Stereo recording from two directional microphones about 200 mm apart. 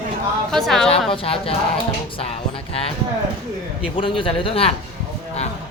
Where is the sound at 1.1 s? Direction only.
25° left (ahead or behind).